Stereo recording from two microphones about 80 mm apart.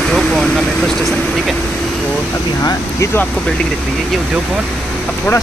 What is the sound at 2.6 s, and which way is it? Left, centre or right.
Speech, left.